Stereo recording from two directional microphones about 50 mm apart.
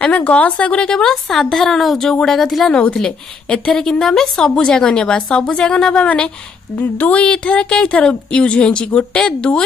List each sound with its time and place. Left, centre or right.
0.0 s a woman's voice: left